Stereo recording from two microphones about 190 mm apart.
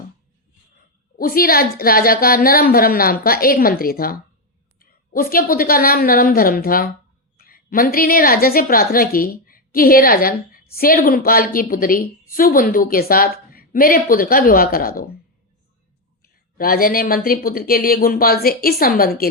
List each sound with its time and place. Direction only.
1.2 s a woman's voice: 50° left (ahead or behind)
16.2 s a woman's voice: 50° left (ahead or behind)